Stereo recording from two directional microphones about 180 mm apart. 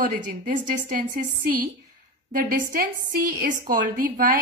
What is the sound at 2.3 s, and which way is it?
A woman's voice, 50° right (ahead or behind).